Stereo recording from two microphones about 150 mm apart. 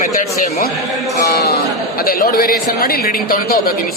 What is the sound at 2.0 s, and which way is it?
Speech, 80° left.